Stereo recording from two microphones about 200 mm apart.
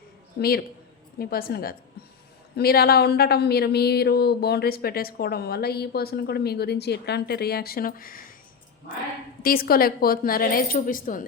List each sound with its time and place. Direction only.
0.3 s speech: 50° left (ahead or behind)
9.4 s speech: 50° left (ahead or behind)